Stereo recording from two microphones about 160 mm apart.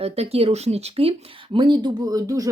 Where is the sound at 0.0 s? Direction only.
40° right (ahead or behind).